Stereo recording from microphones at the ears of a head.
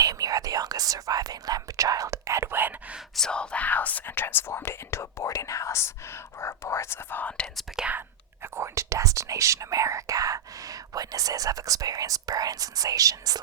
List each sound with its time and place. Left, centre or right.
0.0 s whispering: right
3.8 s speech: left
6.4 s whispering: left
8.5 s speech: right